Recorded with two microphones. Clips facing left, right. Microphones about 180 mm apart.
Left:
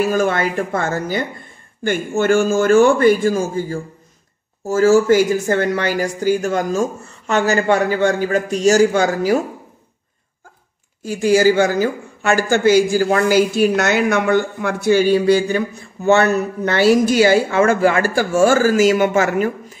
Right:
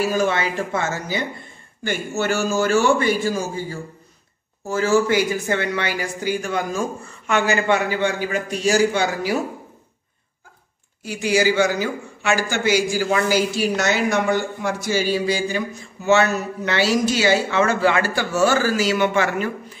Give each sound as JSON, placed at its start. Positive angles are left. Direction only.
{"t": 0.0, "sound": "speech", "side_deg": 50}
{"t": 11.1, "sound": "speech", "side_deg": 45}